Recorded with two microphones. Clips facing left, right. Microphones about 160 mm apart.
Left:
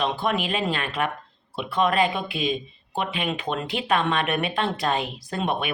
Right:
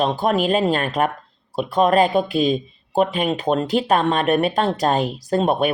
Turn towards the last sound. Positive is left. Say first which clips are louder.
# right 8 dB
turn(degrees=-40)  # may be behind; listen again after turning